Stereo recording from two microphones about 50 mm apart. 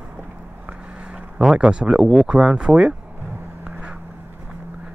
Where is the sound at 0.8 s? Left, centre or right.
Centre.